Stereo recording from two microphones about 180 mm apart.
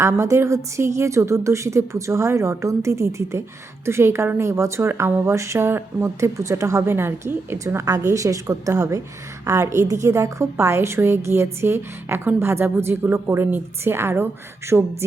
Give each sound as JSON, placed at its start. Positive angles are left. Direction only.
{"t": 0.0, "sound": "a woman's voice", "side_deg": -15}